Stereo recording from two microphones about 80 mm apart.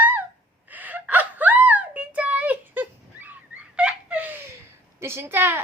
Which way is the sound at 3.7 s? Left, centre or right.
Centre.